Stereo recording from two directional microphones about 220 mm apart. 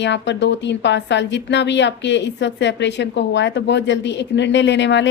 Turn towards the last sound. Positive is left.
turn(degrees=55)  # may be behind; listen again after turning